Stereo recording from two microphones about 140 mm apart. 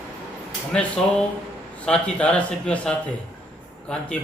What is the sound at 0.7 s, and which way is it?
A man's voice, 10° left (ahead or behind).